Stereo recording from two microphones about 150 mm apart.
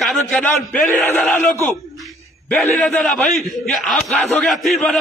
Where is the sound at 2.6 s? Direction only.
Centre (ahead or behind).